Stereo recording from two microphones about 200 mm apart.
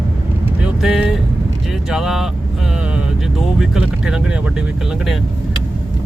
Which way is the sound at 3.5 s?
5° right (ahead or behind).